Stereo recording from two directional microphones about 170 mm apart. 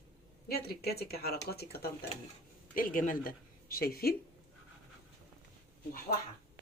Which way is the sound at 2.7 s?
55° left (ahead or behind).